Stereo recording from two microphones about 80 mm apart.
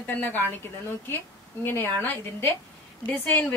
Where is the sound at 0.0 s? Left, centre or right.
Left.